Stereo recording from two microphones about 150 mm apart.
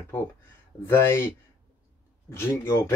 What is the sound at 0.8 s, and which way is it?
Speech, 15° left (ahead or behind).